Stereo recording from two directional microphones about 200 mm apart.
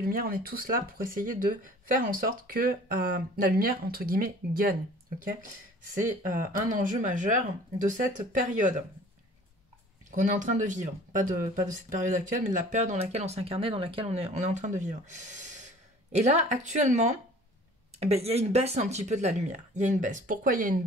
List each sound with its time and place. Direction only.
0.0 s speech: 45° right (ahead or behind)
6.3 s speech: 40° right (ahead or behind)
10.1 s speech: 40° right (ahead or behind)
16.1 s speech: 35° right (ahead or behind)